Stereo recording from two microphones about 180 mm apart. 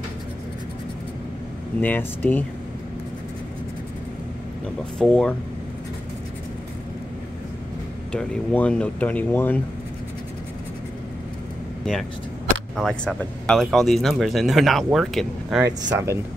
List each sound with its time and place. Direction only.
1.8 s speech: 10° left (ahead or behind)
4.9 s speech: 5° left (ahead or behind)
8.1 s speech: 5° left (ahead or behind)
12.7 s speech: centre (ahead or behind)
15.6 s speech: 15° right (ahead or behind)